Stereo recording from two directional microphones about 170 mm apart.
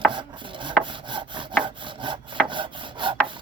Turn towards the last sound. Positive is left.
turn(degrees=-30)  # may be behind; listen again after turning